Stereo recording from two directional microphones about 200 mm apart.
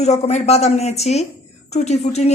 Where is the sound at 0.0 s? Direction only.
35° left (ahead or behind).